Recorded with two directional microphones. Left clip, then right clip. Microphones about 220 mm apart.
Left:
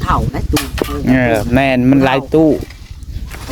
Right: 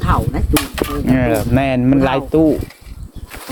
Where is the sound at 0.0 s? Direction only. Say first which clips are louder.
Left 2 dB; 30° left (ahead or behind).